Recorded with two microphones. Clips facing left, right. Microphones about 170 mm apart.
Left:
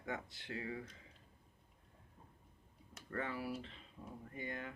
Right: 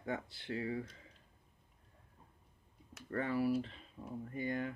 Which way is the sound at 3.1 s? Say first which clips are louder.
Right 8 dB; 35° right (ahead or behind).